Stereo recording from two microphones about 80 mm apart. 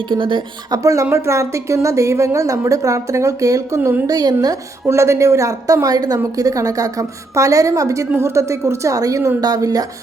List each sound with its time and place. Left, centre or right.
0.1 s speech: right
0.7 s a woman's voice: right
4.9 s a woman's voice: right